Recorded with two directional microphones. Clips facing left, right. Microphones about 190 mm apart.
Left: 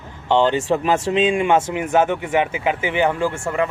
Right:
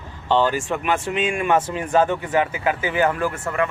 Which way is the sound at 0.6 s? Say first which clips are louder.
Left 4 dB; 35° left (ahead or behind).